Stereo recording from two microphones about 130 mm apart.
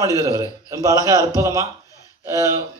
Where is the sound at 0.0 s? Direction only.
25° right (ahead or behind).